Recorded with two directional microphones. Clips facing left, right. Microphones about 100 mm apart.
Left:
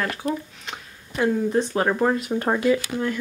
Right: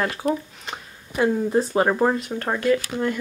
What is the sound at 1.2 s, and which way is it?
Speech, 10° right (ahead or behind).